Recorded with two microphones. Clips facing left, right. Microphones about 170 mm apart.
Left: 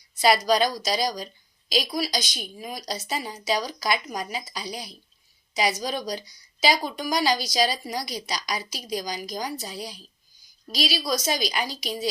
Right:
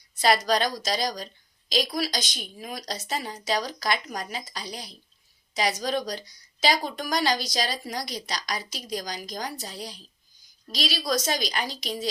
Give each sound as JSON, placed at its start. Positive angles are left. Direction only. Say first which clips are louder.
{"t": 0.2, "sound": "speech", "louder": "left 2 dB", "side_deg": 5}